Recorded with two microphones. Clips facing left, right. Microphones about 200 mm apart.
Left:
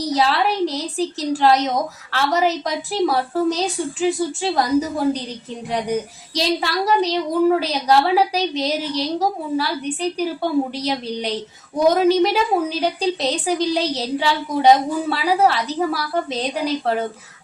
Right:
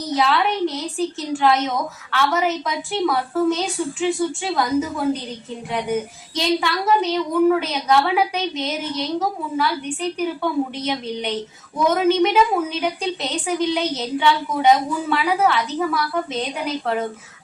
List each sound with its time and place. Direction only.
0.0 s speech: 35° left (ahead or behind)